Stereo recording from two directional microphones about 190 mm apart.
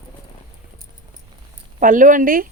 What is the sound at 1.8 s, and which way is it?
Speech, 45° right (ahead or behind).